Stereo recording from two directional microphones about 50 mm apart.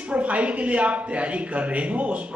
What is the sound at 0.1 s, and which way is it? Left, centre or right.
A man's voice, right.